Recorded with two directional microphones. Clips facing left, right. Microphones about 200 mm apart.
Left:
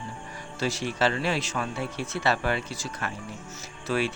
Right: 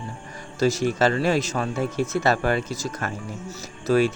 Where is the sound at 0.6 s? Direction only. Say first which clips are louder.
Right 6 dB; 45° right (ahead or behind).